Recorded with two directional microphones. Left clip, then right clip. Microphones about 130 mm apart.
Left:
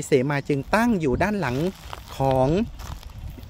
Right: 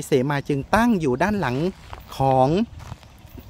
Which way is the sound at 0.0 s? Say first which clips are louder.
Even; 30° right (ahead or behind).